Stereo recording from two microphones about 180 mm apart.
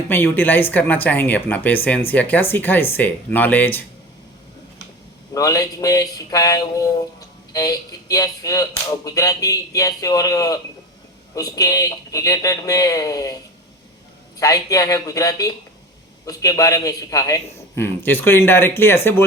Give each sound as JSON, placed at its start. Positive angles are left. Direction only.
{"t": 0.1, "sound": "speech", "side_deg": 10}
{"t": 5.3, "sound": "speech", "side_deg": 20}
{"t": 14.3, "sound": "speech", "side_deg": 20}